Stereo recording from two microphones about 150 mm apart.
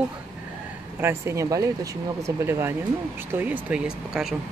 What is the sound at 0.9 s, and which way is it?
Speech, 15° right (ahead or behind).